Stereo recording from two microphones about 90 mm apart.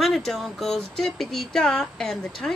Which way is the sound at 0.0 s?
5° left (ahead or behind).